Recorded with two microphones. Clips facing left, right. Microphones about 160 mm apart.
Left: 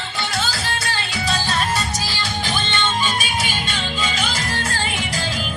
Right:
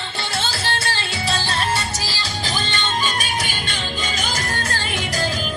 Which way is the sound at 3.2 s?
50° right (ahead or behind).